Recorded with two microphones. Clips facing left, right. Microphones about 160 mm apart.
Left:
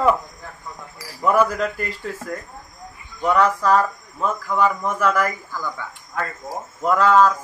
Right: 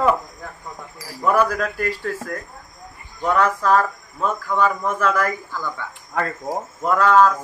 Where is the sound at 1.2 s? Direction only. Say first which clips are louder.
Left 1 dB; 15° left (ahead or behind).